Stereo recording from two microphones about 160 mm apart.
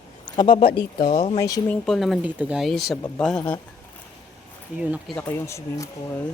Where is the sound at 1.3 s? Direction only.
20° left (ahead or behind).